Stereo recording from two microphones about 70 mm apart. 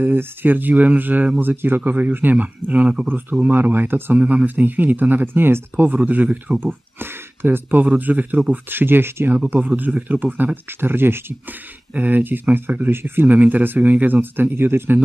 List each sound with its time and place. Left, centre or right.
0.0 s speech: right
4.2 s speech: centre; by 11.3 s right
11.9 s speech: right